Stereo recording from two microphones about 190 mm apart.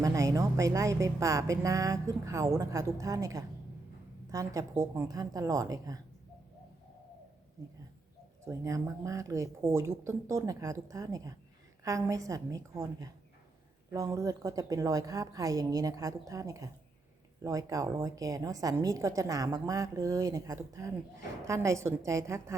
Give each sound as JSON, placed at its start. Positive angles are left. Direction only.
{"t": 0.0, "sound": "a woman's voice", "side_deg": -15}
{"t": 8.4, "sound": "a woman's voice", "side_deg": -15}